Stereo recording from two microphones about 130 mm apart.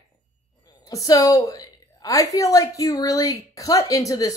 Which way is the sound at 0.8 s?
25° left (ahead or behind).